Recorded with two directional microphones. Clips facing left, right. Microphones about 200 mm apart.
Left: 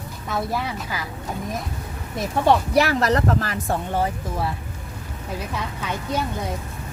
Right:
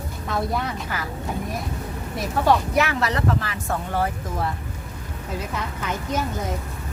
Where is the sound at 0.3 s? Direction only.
5° left (ahead or behind).